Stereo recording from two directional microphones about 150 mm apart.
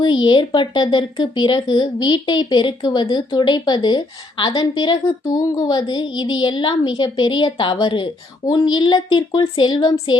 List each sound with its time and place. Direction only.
0.0 s speech: 30° left (ahead or behind)